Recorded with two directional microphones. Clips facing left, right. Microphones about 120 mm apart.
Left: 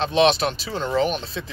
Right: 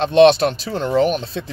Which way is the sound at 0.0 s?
50° right (ahead or behind).